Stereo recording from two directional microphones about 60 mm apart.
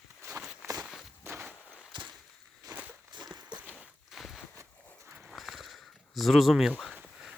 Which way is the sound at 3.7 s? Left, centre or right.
Centre.